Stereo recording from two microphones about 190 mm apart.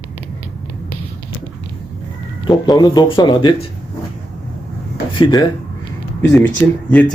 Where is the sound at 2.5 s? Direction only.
20° left (ahead or behind).